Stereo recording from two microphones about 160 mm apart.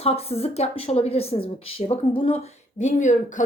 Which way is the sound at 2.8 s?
50° left (ahead or behind).